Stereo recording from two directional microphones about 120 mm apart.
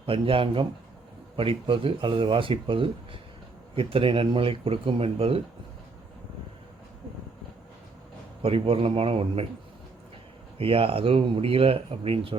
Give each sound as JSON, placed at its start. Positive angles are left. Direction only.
{"t": 0.0, "sound": "speech", "side_deg": -50}
{"t": 8.4, "sound": "speech", "side_deg": -50}
{"t": 10.6, "sound": "speech", "side_deg": -50}